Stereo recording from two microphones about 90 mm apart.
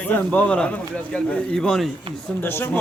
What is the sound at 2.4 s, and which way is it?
Speech, 25° left (ahead or behind).